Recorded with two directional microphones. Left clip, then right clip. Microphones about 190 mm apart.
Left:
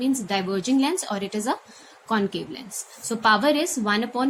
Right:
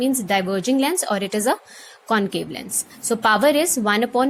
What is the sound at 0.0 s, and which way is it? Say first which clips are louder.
A woman's voice: right 5 dB; 40° right (ahead or behind).